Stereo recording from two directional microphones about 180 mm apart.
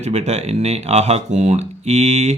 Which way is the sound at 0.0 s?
35° right (ahead or behind).